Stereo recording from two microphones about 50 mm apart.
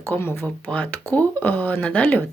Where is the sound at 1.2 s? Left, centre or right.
Left.